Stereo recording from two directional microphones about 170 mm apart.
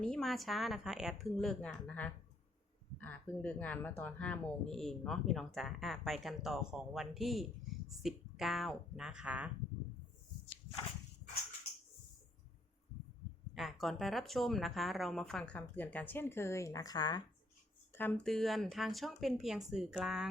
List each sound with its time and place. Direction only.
0.0 s speech: 5° left (ahead or behind)
13.5 s speech: centre (ahead or behind); by 17.2 s 25° left (ahead or behind)
17.9 s speech: 10° left (ahead or behind)